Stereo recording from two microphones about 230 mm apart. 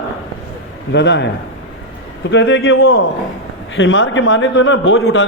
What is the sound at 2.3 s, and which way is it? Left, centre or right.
A man's voice, left.